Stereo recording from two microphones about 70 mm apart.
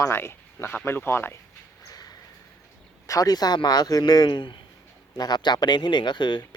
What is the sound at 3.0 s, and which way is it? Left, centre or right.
A man's voice, left.